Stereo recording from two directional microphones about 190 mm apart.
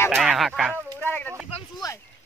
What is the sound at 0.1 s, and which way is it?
Speech, centre (ahead or behind).